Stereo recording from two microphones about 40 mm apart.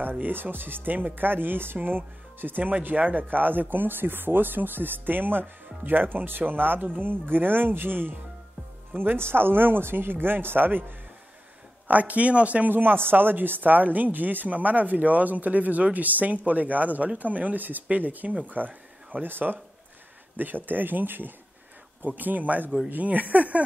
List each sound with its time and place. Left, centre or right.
0.2 s speech: right
11.9 s speech: right
12.6 s speech: right
18.5 s a sound: right
19.2 s speech: right